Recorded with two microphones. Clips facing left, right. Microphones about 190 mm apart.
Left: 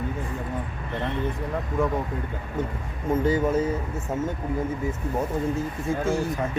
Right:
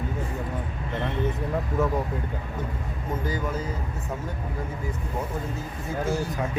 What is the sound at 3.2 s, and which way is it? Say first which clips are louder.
Speech: left 8 dB; 25° left (ahead or behind).